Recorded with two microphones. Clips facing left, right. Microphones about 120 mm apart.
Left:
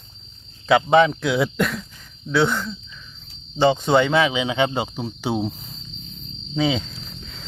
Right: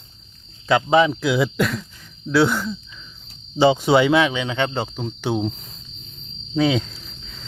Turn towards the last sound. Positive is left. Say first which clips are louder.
# left 4 dB
turn(degrees=0)  # may be behind; listen again after turning